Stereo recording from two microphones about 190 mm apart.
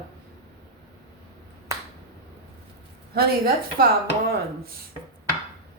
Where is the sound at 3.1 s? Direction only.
55° right (ahead or behind).